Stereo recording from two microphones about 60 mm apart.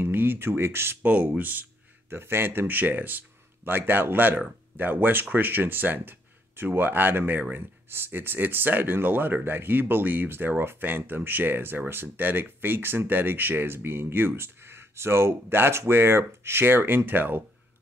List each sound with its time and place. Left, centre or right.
0.0 s speech: right
1.0 s speech: right